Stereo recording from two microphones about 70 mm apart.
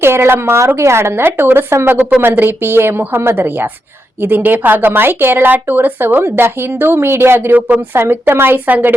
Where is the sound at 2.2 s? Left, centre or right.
Right.